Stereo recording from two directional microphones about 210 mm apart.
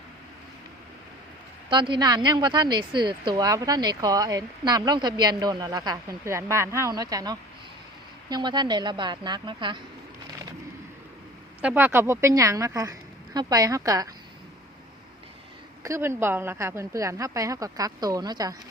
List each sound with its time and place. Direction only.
1.7 s a woman's voice: 20° right (ahead or behind)
11.6 s a woman's voice: 10° right (ahead or behind)
15.8 s a woman's voice: 15° right (ahead or behind)